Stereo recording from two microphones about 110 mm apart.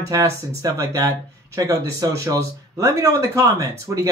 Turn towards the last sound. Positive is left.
turn(degrees=-30)  # may be behind; listen again after turning